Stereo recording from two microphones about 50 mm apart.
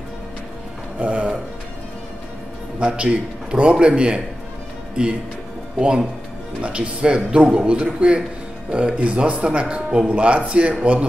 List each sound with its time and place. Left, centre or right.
0.9 s a man's voice: right
2.8 s a man's voice: right
5.8 s a man's voice: right